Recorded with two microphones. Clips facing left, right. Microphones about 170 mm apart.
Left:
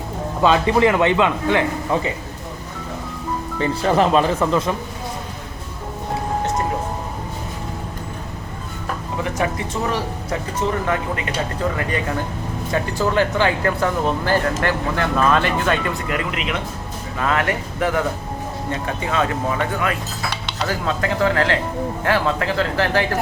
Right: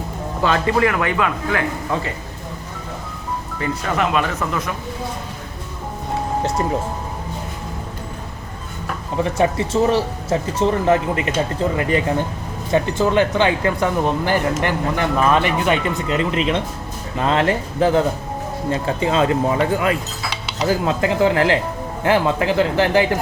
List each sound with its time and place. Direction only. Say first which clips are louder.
0.4 s speech: left 2 dB; 20° left (ahead or behind)
3.6 s speech: left 4 dB; 30° left (ahead or behind)
9.4 s speech: right 7 dB; 30° right (ahead or behind)
12.7 s speech: right 3 dB; 20° right (ahead or behind)